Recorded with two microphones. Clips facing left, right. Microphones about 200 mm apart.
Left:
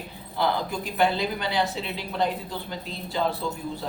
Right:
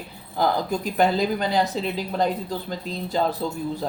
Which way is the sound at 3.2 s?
40° right (ahead or behind).